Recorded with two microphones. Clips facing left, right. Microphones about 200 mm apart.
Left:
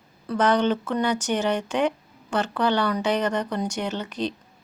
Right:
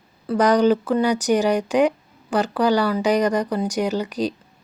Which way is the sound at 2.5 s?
10° right (ahead or behind).